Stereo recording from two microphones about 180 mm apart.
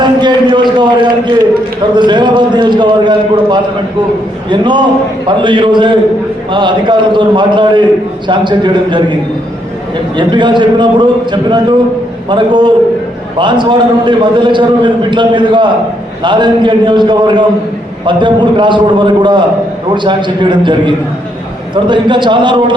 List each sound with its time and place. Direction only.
0.0 s a sound: 25° right (ahead or behind)
2.0 s a man's voice: 25° right (ahead or behind)
10.2 s a man's voice: 25° right (ahead or behind)